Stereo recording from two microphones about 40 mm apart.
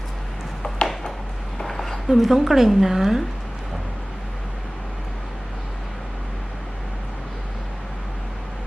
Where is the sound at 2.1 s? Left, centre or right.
Centre.